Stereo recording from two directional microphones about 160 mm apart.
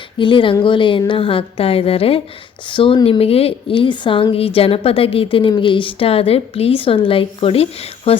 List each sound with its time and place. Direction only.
0.2 s a woman's voice: 30° left (ahead or behind)